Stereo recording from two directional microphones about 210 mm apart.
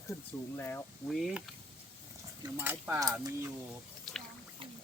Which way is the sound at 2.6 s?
10° right (ahead or behind).